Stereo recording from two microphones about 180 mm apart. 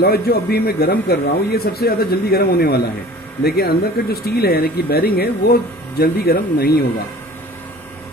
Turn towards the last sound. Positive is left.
turn(degrees=60)  # may be behind; listen again after turning